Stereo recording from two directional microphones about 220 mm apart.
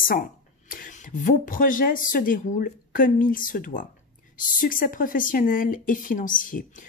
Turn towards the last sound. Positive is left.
turn(degrees=35)  # may be behind; listen again after turning